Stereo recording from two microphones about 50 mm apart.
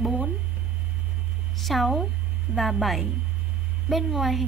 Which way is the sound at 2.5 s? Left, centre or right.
Right.